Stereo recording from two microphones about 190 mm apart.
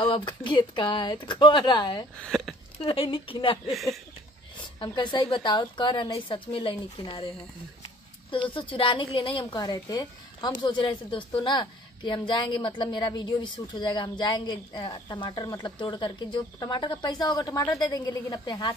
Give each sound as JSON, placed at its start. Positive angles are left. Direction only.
{"t": 0.0, "sound": "a woman's voice", "side_deg": 25}
{"t": 2.1, "sound": "speech", "side_deg": 5}
{"t": 2.8, "sound": "a woman's voice", "side_deg": 30}
{"t": 3.7, "sound": "speech", "side_deg": 0}
{"t": 4.7, "sound": "a woman's voice", "side_deg": 25}